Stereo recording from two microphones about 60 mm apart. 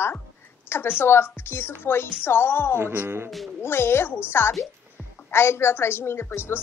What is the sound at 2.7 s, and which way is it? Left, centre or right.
Speech, right.